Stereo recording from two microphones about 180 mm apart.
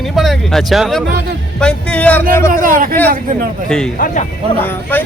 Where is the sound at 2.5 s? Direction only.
50° right (ahead or behind).